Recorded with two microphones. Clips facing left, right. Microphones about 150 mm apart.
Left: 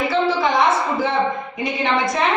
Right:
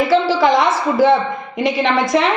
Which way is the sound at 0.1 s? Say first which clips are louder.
Right 5 dB; 90° right.